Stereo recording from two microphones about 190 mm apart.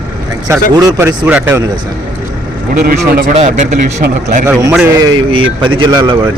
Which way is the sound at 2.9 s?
50° right (ahead or behind).